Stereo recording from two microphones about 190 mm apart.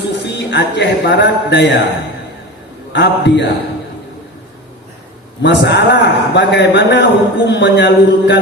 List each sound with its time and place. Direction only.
0.2 s a man's voice: 65° left (ahead or behind)
2.9 s a man's voice: 65° left (ahead or behind)
5.4 s a man's voice: 65° left (ahead or behind)